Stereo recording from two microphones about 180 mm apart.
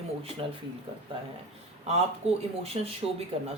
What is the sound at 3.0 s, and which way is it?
Speech, 30° right (ahead or behind).